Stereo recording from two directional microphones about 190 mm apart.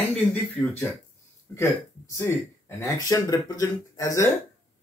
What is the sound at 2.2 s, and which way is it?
Speech, 15° left (ahead or behind).